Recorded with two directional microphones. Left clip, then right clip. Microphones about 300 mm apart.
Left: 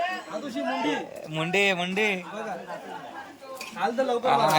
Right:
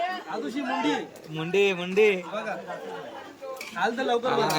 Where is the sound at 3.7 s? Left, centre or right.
Centre.